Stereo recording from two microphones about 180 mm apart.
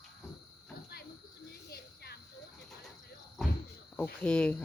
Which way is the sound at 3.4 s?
Centre (ahead or behind).